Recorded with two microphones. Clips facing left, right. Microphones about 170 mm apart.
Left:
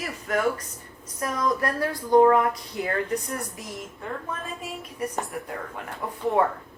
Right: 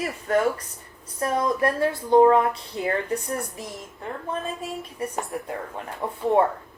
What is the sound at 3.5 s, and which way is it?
A woman's voice, centre (ahead or behind).